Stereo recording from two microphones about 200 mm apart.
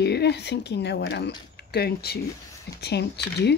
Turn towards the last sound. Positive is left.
turn(degrees=55)  # may be behind; listen again after turning